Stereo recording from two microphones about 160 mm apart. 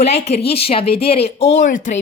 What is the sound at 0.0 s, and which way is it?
Speech, 40° left (ahead or behind).